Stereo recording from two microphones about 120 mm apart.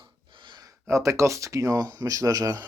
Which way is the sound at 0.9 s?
25° right (ahead or behind).